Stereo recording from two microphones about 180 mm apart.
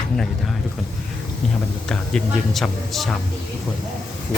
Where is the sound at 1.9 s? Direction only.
Centre (ahead or behind).